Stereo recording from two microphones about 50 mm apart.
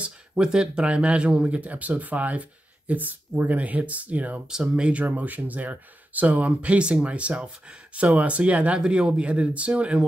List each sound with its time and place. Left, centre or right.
0.4 s speech: centre
4.5 s speech: centre
5.0 s speech: right
8.7 s speech: centre